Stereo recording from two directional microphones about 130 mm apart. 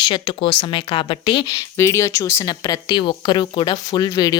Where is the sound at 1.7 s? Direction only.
20° left (ahead or behind).